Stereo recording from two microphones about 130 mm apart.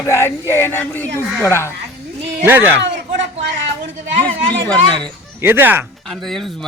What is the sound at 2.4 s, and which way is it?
Speech, 15° right (ahead or behind).